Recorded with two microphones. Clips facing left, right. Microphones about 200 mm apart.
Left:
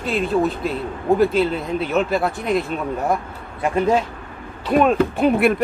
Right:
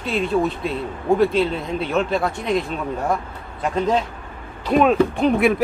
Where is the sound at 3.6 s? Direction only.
10° left (ahead or behind).